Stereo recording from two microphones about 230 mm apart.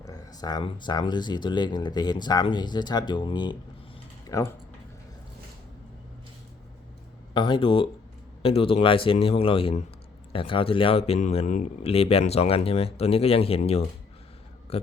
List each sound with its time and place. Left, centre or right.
0.0 s speech: centre
7.3 s speech: left
14.7 s speech: left